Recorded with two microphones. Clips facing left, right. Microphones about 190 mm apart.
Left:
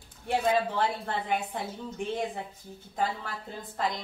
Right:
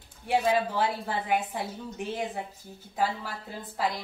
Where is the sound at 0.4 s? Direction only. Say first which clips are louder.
Even; 5° right (ahead or behind).